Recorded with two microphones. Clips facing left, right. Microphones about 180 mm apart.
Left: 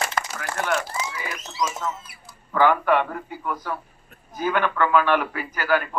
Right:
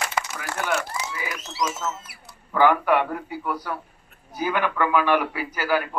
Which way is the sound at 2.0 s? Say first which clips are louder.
Even; 70° right (ahead or behind).